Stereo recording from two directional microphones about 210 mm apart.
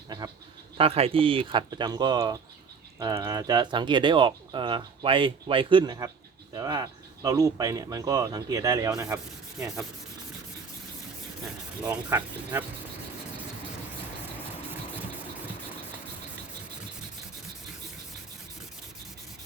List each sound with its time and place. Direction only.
0.8 s speech: 25° right (ahead or behind); by 9.8 s 5° right (ahead or behind)
11.8 s speech: 10° right (ahead or behind)